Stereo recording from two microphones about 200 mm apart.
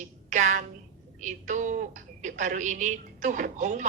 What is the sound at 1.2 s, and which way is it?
A woman's voice, 40° right (ahead or behind).